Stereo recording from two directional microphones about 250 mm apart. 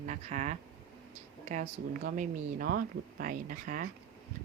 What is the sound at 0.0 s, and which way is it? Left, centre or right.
Speech, right.